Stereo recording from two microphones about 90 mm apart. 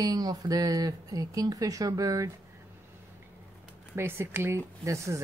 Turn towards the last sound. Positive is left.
turn(degrees=-35)  # may be behind; listen again after turning